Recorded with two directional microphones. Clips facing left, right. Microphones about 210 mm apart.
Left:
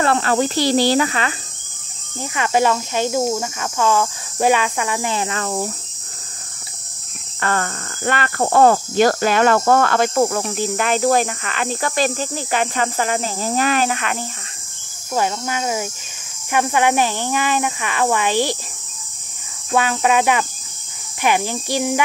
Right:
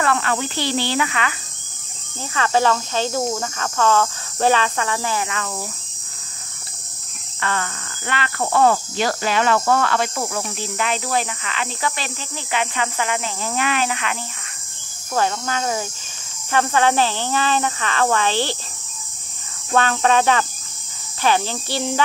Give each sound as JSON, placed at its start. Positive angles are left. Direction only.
{"t": 0.0, "sound": "speech", "side_deg": 35}
{"t": 2.3, "sound": "speech", "side_deg": 15}
{"t": 7.3, "sound": "speech", "side_deg": 45}
{"t": 15.1, "sound": "speech", "side_deg": 10}
{"t": 19.7, "sound": "speech", "side_deg": 10}